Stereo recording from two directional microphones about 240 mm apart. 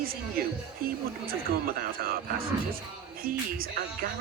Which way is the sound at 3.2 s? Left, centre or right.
Right.